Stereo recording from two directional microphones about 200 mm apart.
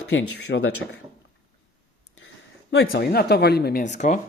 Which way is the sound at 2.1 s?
65° left (ahead or behind).